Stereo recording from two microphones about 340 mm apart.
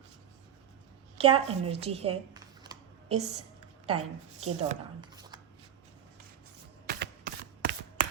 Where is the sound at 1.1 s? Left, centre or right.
Centre.